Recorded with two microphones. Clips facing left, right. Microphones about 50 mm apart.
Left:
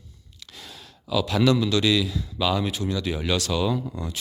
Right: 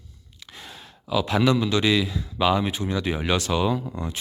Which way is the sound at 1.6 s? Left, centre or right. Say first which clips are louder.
Even; right.